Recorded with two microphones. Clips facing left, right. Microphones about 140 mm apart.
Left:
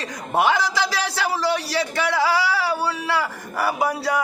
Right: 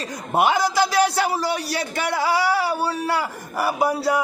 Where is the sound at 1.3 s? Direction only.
15° right (ahead or behind).